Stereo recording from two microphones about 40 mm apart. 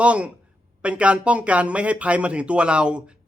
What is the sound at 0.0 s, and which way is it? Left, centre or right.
Speech, right.